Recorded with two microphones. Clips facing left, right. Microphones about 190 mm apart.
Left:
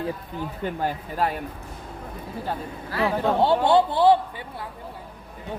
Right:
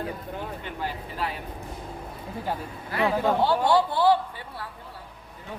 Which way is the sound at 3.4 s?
25° left (ahead or behind).